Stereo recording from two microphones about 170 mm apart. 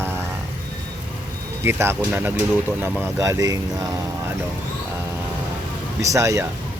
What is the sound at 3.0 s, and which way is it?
Speech, 20° right (ahead or behind).